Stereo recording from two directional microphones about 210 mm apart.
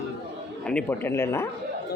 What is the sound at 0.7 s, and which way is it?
Speech, 5° left (ahead or behind).